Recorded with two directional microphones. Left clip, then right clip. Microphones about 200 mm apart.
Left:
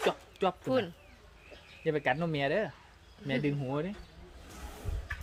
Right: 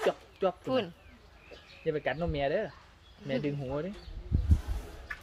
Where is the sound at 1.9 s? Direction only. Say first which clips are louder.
Left 1 dB; 60° left (ahead or behind).